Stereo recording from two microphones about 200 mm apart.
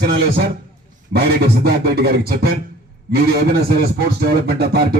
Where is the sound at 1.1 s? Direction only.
55° right (ahead or behind).